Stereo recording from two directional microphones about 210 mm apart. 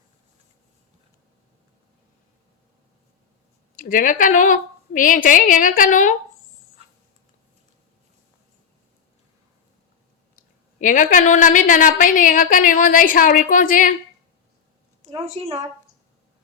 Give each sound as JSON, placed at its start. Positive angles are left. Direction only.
{"t": 3.8, "sound": "a woman's voice", "side_deg": 40}
{"t": 10.8, "sound": "a woman's voice", "side_deg": 40}
{"t": 15.4, "sound": "a woman's voice", "side_deg": -30}